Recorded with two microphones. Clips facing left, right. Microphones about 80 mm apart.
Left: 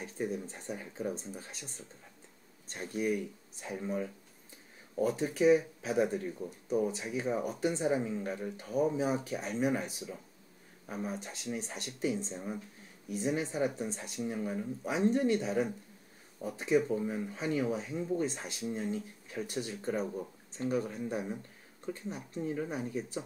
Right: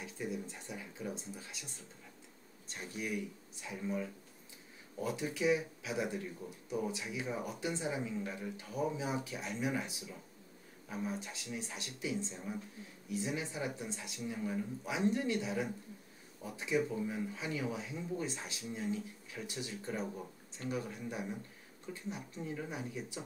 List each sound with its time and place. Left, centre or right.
0.0 s speech: left
2.7 s speech: left